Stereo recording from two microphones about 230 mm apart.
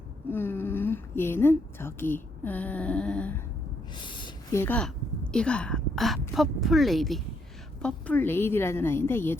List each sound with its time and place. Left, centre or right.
0.3 s a woman's voice: centre
3.9 s owl: left
4.6 s a woman's voice: centre